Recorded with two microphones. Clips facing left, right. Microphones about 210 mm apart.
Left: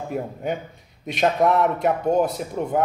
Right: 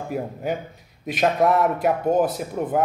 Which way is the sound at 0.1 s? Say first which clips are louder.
Right 1 dB; centre (ahead or behind).